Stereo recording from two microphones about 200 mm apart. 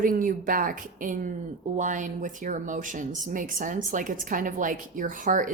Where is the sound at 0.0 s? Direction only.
45° right (ahead or behind).